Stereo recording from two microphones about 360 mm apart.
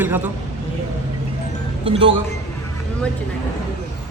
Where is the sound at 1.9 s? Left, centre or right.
Centre.